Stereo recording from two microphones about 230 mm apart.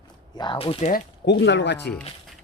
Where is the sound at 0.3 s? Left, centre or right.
Left.